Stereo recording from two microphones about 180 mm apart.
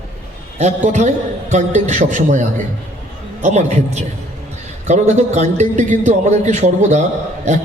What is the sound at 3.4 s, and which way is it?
A man's voice, 40° right (ahead or behind).